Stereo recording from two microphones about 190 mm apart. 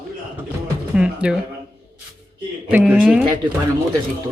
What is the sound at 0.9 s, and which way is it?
Music, 5° right (ahead or behind).